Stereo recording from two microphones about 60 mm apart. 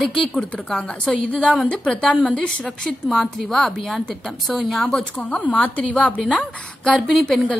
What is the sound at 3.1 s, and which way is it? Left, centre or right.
A woman's voice, centre.